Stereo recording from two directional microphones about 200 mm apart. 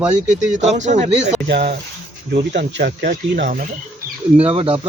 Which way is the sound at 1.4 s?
55° right (ahead or behind).